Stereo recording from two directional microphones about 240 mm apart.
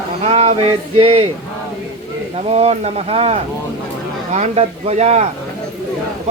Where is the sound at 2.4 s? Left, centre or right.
Right.